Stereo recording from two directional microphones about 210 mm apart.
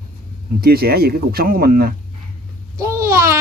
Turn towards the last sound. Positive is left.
turn(degrees=-15)  # may be behind; listen again after turning